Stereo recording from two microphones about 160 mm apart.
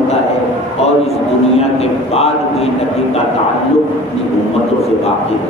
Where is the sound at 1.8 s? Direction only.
40° left (ahead or behind).